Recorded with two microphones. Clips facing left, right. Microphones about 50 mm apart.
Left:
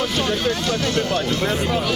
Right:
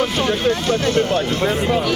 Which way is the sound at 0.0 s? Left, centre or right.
Right.